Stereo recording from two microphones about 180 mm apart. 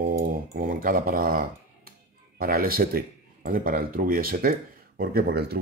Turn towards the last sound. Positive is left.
turn(degrees=-60)  # may be behind; listen again after turning